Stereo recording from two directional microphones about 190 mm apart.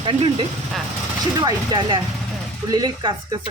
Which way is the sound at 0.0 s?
25° right (ahead or behind).